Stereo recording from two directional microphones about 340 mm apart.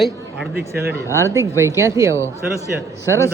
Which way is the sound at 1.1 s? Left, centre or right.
Centre.